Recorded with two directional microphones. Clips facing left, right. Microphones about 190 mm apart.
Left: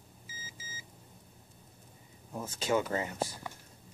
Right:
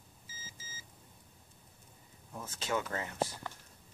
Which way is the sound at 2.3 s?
20° left (ahead or behind).